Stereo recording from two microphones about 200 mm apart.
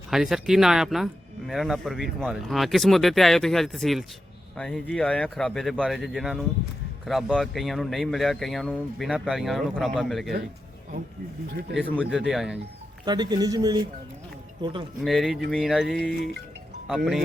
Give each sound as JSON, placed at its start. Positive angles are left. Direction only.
{"t": 0.1, "sound": "speech", "side_deg": 0}
{"t": 11.8, "sound": "speech", "side_deg": 5}
{"t": 13.1, "sound": "speech", "side_deg": -20}
{"t": 15.0, "sound": "speech", "side_deg": 0}